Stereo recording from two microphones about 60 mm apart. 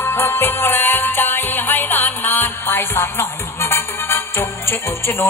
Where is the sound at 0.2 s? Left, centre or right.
Left.